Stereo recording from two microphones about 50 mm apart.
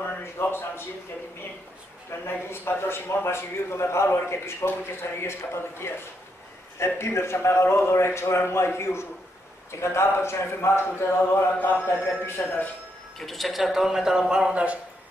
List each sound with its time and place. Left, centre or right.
0.2 s a man's voice: left
2.0 s a man's voice: left
11.5 s a man's voice: left
13.2 s speech: centre